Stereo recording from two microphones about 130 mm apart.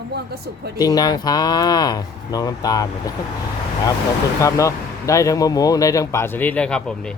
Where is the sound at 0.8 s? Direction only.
30° left (ahead or behind).